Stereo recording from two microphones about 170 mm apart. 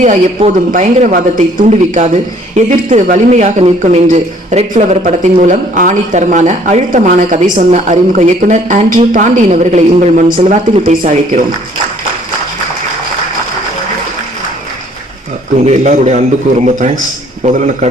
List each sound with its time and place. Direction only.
0.0 s speech: 40° right (ahead or behind)
15.6 s speech: 45° right (ahead or behind)
17.4 s speech: 45° right (ahead or behind)